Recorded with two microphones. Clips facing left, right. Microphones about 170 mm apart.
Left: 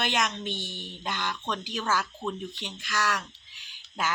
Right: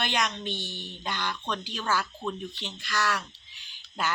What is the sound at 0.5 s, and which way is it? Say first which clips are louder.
Speech: even; 50° left (ahead or behind).